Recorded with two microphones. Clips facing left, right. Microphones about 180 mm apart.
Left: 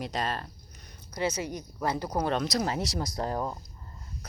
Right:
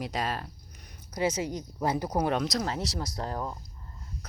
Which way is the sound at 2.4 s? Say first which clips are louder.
Left 1 dB; 5° left (ahead or behind).